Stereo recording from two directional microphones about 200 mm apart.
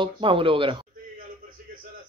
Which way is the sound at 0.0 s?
25° right (ahead or behind).